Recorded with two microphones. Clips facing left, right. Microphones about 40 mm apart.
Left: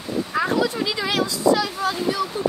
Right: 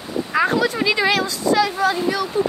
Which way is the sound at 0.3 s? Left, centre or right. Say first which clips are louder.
Right 4 dB; right.